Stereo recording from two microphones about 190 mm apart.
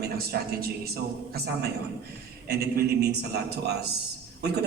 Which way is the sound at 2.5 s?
55° right (ahead or behind).